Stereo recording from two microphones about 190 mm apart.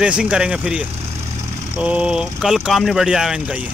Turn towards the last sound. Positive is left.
turn(degrees=-5)  # may be behind; listen again after turning